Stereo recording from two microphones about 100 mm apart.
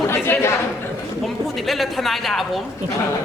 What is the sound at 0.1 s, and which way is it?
Chatter, 25° left (ahead or behind).